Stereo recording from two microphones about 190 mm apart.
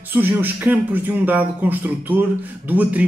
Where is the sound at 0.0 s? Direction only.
10° right (ahead or behind).